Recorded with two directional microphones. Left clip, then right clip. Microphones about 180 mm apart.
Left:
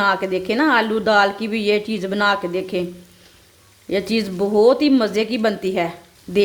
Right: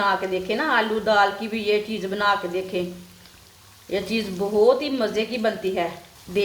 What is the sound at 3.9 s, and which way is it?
A woman's voice, 65° left (ahead or behind).